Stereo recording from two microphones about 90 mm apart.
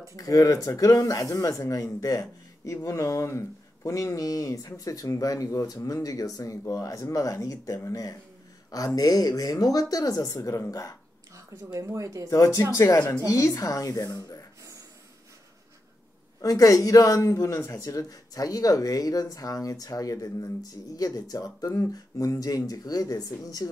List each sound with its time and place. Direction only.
0.1 s speech: 40° left (ahead or behind)
11.3 s speech: 35° right (ahead or behind)
12.3 s speech: 40° left (ahead or behind)
16.3 s speech: 40° left (ahead or behind)